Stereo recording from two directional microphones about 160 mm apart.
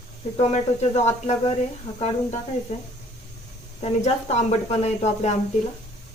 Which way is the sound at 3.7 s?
40° left (ahead or behind).